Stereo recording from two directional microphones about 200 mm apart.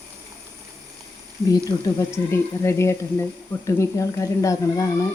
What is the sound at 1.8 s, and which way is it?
Speech, 15° left (ahead or behind).